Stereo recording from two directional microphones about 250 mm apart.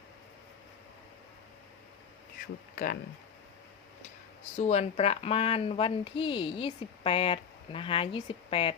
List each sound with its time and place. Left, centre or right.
2.7 s speech: left
4.5 s speech: left